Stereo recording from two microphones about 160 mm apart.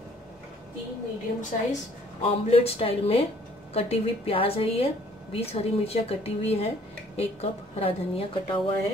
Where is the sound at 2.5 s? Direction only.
40° left (ahead or behind).